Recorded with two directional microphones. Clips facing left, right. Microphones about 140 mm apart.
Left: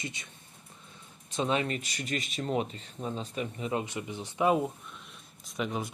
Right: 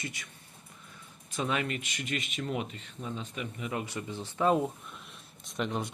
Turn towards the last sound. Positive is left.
turn(degrees=0)  # may be behind; listen again after turning